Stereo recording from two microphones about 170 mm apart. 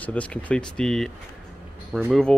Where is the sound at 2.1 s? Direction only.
5° left (ahead or behind).